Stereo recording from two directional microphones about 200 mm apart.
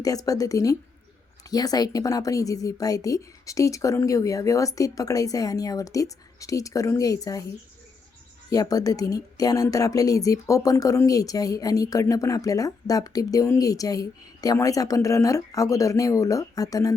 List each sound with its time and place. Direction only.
0.0 s a woman's voice: 15° left (ahead or behind)
8.4 s a woman's voice: 15° left (ahead or behind)